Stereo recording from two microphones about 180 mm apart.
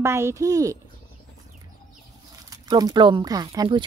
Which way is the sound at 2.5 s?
20° right (ahead or behind).